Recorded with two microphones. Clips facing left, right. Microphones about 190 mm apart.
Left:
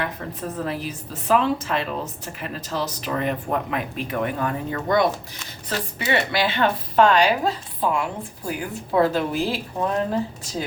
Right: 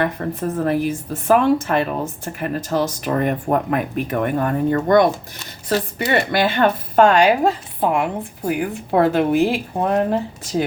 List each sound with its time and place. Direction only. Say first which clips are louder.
0.0 s a woman's voice: right 7 dB; 50° right (ahead or behind)